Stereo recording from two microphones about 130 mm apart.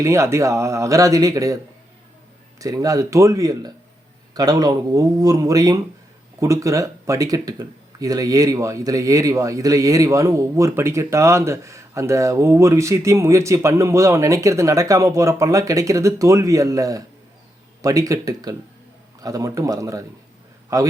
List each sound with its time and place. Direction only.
0.0 s speech: 20° right (ahead or behind)
2.6 s speech: 25° right (ahead or behind)